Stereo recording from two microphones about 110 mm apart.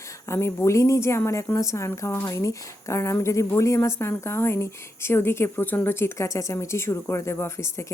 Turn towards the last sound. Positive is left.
turn(degrees=25)  # may be behind; listen again after turning